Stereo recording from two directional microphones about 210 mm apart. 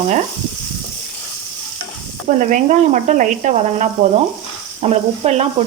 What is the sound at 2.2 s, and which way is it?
Stir, 35° right (ahead or behind).